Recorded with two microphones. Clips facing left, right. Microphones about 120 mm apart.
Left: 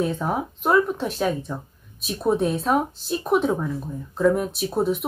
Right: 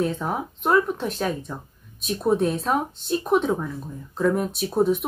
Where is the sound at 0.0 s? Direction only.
5° left (ahead or behind).